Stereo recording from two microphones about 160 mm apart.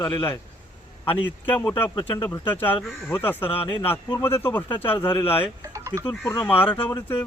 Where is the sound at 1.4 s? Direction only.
10° left (ahead or behind).